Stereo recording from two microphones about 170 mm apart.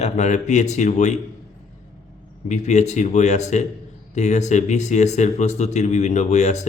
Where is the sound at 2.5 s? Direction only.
40° left (ahead or behind).